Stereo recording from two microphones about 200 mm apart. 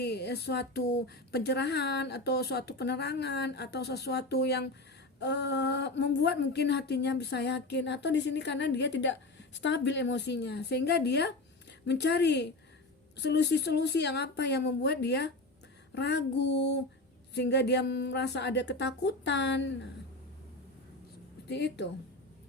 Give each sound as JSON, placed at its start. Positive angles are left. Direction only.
{"t": 0.0, "sound": "speech", "side_deg": 55}
{"t": 21.5, "sound": "speech", "side_deg": 55}